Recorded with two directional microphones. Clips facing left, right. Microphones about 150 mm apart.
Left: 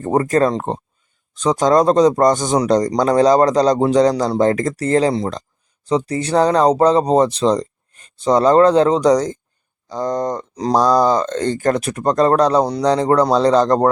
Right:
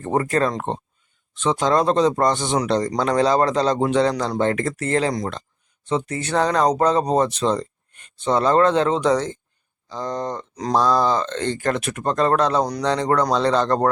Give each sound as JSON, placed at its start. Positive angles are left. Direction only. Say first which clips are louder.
{"t": 0.0, "sound": "a man's voice", "louder": "left 5 dB", "side_deg": 35}